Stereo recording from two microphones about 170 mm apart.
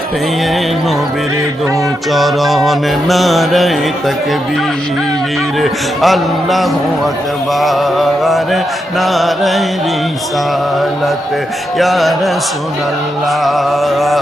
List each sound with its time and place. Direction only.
2.1 s mantra: centre (ahead or behind)
5.5 s mantra: centre (ahead or behind)
11.8 s mantra: centre (ahead or behind)
13.4 s mantra: centre (ahead or behind)